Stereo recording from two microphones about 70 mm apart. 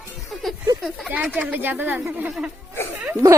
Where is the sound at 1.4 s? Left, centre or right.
Right.